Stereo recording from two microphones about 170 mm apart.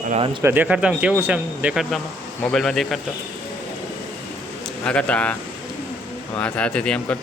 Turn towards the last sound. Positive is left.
turn(degrees=5)  # may be behind; listen again after turning